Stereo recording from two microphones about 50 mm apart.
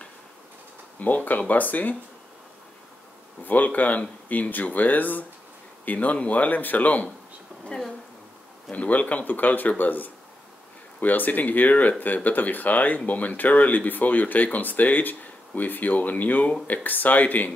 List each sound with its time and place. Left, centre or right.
0.9 s speech: left
3.4 s speech: left
7.6 s a sound: centre
8.7 s speech: left